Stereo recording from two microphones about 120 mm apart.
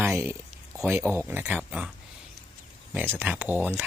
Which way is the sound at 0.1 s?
20° right (ahead or behind).